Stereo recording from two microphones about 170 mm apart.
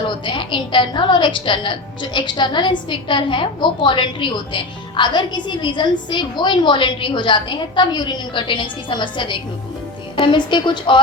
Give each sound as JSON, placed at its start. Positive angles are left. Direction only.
{"t": 0.3, "sound": "a woman's voice", "side_deg": 30}